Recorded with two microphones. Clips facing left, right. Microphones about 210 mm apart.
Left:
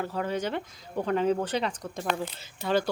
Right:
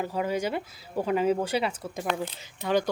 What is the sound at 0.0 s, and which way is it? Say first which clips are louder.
Speech: right 2 dB; 10° right (ahead or behind).